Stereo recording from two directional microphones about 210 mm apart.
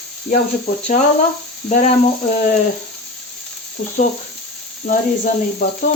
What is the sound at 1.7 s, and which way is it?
Speech, 35° left (ahead or behind).